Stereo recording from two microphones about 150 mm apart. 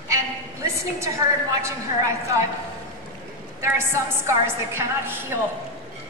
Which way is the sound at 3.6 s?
20° right (ahead or behind).